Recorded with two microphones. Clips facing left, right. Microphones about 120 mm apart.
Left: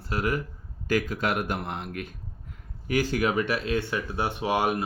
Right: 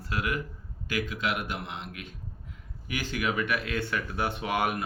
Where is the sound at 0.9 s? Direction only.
45° left (ahead or behind).